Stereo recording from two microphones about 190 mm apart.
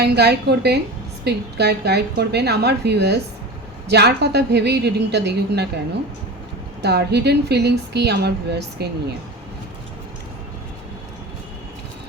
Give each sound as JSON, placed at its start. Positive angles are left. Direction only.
{"t": 0.0, "sound": "a woman's voice", "side_deg": -60}
{"t": 6.8, "sound": "a woman's voice", "side_deg": -60}